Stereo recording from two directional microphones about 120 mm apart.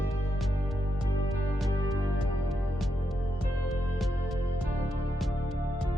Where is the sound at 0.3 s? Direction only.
Centre (ahead or behind).